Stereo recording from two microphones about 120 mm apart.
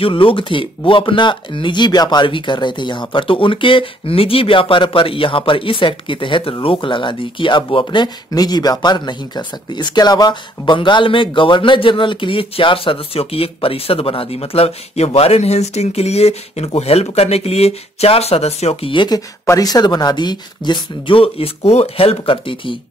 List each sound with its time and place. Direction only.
0.0 s speech: 45° left (ahead or behind)